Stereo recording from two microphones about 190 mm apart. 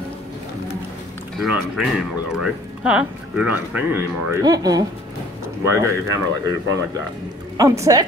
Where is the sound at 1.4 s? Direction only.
Centre (ahead or behind).